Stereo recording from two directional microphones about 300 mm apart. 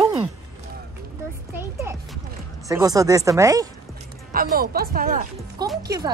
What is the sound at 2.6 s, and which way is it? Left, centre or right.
Speech, centre.